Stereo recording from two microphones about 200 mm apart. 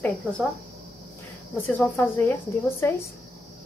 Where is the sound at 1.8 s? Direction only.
10° left (ahead or behind).